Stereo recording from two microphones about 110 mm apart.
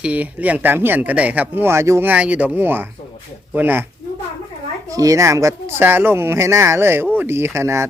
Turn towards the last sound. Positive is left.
turn(degrees=-25)  # may be behind; listen again after turning